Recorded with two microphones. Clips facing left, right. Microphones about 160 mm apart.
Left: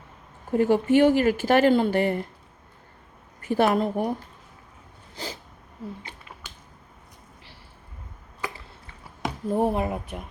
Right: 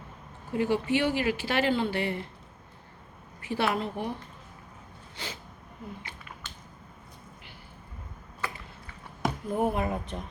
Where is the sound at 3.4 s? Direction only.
45° left (ahead or behind).